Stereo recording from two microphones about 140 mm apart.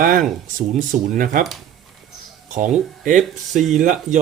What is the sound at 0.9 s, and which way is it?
Speech, 65° right (ahead or behind).